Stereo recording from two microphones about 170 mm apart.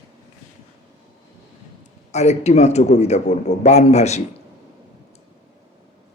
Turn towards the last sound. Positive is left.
turn(degrees=40)  # may be behind; listen again after turning